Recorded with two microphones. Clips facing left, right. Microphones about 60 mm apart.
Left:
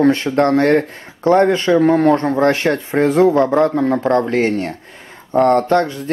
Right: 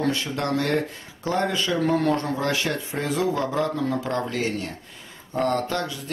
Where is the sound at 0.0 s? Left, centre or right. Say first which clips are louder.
Left 12 dB; left.